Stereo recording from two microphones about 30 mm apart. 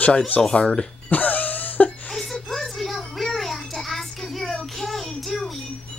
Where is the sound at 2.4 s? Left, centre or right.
Centre.